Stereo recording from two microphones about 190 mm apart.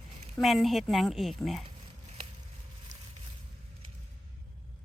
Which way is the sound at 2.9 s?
70° right (ahead or behind).